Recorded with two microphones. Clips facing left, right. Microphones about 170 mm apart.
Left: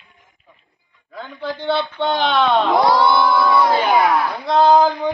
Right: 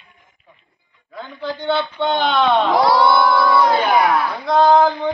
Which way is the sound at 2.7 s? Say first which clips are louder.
Right 1 dB; 20° left (ahead or behind).